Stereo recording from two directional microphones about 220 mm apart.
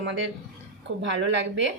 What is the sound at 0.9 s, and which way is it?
Speech, 60° right (ahead or behind).